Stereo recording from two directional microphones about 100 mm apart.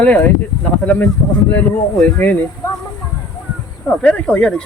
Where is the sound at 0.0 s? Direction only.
15° left (ahead or behind).